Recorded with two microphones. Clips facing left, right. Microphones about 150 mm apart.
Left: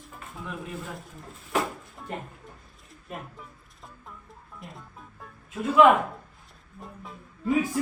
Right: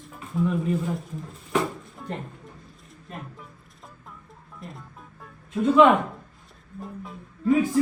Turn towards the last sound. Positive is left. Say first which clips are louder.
# right 4 dB
turn(degrees=0)  # may be behind; listen again after turning